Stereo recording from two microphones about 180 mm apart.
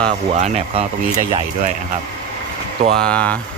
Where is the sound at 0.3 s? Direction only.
35° right (ahead or behind).